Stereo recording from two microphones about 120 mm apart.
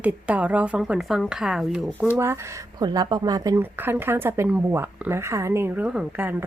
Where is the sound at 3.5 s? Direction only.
15° right (ahead or behind).